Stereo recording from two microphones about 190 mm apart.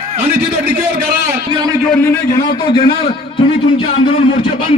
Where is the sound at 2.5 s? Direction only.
25° left (ahead or behind).